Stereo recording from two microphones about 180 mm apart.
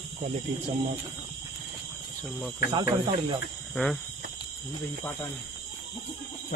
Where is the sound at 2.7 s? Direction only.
30° right (ahead or behind).